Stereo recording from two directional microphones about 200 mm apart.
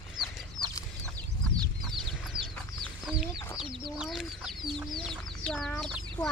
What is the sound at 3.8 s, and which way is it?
Chicken, centre (ahead or behind).